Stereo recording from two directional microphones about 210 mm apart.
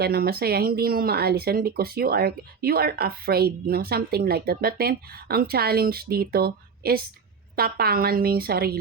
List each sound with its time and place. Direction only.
0.0 s speech: 45° right (ahead or behind)